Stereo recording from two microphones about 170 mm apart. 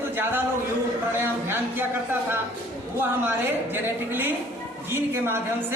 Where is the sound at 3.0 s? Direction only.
10° right (ahead or behind).